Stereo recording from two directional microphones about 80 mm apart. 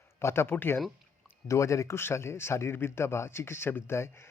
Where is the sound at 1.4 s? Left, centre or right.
Left.